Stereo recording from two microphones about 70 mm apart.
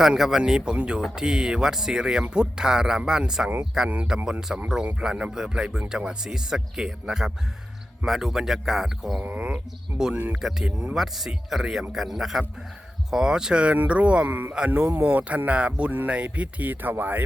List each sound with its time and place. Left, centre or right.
0.0 s speech: centre
4.3 s a man's voice: centre
9.2 s speech: right
10.3 s a man's voice: centre
10.7 s speech: centre
10.9 s a man's voice: centre; by 14.5 s right
14.5 s speech: centre